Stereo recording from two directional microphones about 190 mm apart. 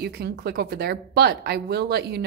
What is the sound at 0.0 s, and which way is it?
Speech, 55° right (ahead or behind).